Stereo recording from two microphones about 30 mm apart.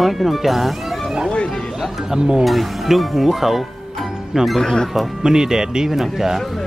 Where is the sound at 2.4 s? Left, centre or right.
Centre.